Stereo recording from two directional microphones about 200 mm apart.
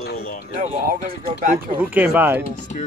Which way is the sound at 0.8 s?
45° right (ahead or behind).